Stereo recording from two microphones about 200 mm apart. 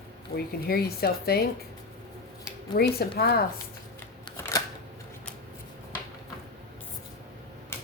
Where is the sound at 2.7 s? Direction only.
50° left (ahead or behind).